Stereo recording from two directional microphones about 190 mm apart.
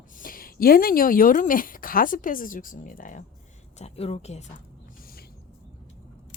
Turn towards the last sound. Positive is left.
turn(degrees=50)  # may be behind; listen again after turning